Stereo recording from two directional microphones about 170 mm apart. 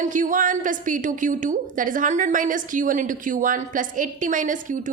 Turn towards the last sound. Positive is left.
turn(degrees=-50)  # may be behind; listen again after turning